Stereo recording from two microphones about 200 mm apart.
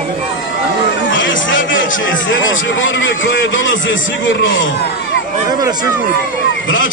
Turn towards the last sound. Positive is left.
turn(degrees=75)  # may be behind; listen again after turning